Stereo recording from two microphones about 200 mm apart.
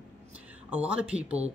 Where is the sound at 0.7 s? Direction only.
5° right (ahead or behind).